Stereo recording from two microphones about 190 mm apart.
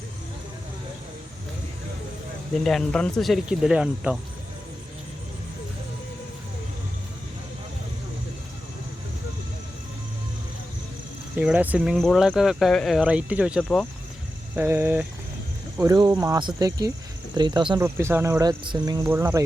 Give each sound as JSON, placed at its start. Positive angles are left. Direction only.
{"t": 2.6, "sound": "speech", "side_deg": 5}
{"t": 11.3, "sound": "speech", "side_deg": -5}
{"t": 17.8, "sound": "speech", "side_deg": -10}